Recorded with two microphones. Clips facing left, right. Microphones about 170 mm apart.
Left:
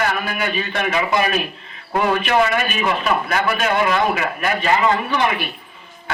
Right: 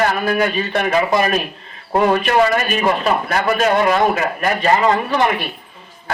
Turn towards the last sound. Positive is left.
turn(degrees=-40)  # may be behind; listen again after turning